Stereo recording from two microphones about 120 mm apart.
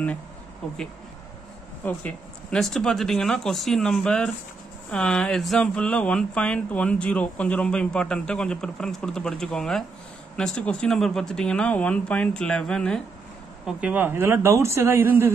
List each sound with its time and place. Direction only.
1.9 s speech: 10° left (ahead or behind)
13.7 s a woman's voice: 10° right (ahead or behind)